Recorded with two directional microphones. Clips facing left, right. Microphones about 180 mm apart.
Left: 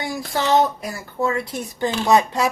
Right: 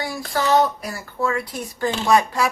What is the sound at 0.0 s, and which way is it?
Speech, 25° left (ahead or behind).